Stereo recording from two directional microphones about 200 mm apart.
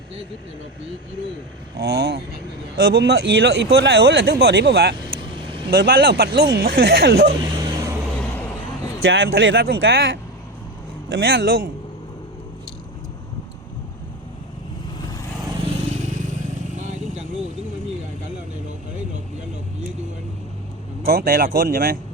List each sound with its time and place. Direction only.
1.8 s speech: 55° right (ahead or behind)
4.9 s vehicle: 20° right (ahead or behind)
5.7 s speech: 55° right (ahead or behind)
7.4 s vehicle: 20° right (ahead or behind)
9.0 s speech: 65° right (ahead or behind)
16.8 s vehicle: 35° right (ahead or behind)
21.1 s speech: 50° right (ahead or behind)